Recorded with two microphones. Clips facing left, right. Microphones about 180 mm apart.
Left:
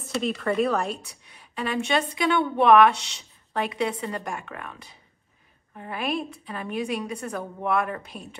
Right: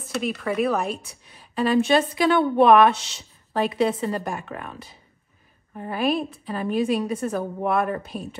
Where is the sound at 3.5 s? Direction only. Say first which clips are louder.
Right 5 dB; 30° right (ahead or behind).